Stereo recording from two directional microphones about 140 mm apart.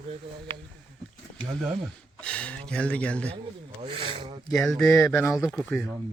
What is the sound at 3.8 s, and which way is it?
Rub, 40° right (ahead or behind).